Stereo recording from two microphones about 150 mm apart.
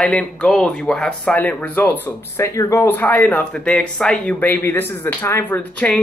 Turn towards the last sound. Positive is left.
turn(degrees=10)  # may be behind; listen again after turning